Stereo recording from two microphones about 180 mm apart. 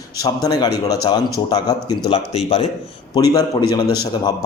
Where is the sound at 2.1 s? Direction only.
35° left (ahead or behind).